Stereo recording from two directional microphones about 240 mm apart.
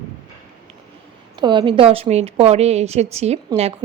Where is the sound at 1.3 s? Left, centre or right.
Centre.